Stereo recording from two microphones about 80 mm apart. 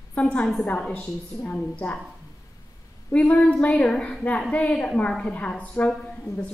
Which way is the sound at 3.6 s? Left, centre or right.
Centre.